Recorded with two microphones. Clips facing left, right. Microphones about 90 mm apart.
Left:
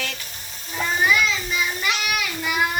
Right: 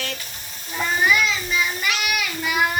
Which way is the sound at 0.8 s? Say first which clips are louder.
Even; centre (ahead or behind).